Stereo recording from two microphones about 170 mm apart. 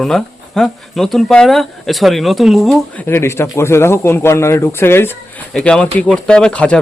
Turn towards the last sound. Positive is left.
turn(degrees=5)  # may be behind; listen again after turning